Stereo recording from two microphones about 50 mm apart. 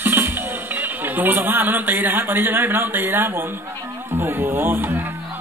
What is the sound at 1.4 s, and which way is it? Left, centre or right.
A man's voice, right.